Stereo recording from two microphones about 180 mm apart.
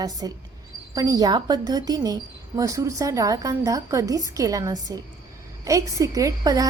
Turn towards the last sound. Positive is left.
turn(degrees=-20)  # may be behind; listen again after turning